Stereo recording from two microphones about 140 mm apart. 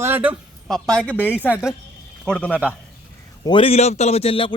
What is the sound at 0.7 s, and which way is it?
Speech, 5° left (ahead or behind).